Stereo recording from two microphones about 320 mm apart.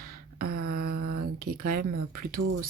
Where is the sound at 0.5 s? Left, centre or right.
Right.